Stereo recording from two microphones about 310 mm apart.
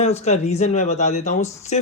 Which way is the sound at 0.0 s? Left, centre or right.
Left.